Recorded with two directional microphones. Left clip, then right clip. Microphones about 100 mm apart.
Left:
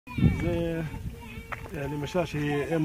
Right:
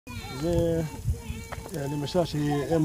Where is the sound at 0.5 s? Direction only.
40° right (ahead or behind).